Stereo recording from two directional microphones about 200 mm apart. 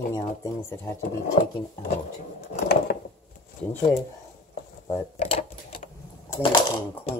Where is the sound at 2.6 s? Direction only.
55° left (ahead or behind).